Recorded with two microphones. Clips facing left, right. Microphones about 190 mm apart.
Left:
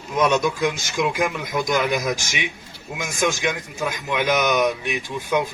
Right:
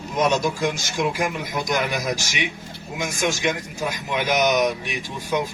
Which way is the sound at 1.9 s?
50° left (ahead or behind).